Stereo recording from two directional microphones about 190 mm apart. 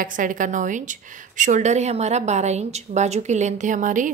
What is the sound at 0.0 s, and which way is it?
A woman's voice, 45° right (ahead or behind).